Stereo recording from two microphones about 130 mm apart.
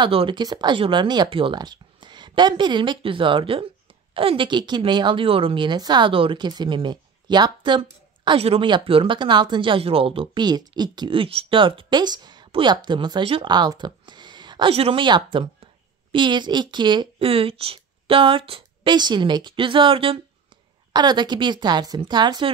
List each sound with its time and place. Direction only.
0.0 s a woman's voice: 40° right (ahead or behind)
8.4 s a woman's voice: 45° right (ahead or behind)
14.7 s a woman's voice: 45° right (ahead or behind)